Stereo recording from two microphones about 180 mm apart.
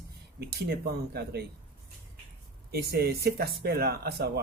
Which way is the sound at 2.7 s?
60° right (ahead or behind).